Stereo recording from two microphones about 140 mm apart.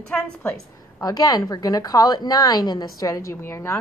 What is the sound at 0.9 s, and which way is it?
A woman's voice, 30° left (ahead or behind).